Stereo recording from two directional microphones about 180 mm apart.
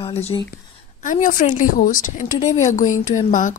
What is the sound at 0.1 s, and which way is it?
Speech, 35° left (ahead or behind).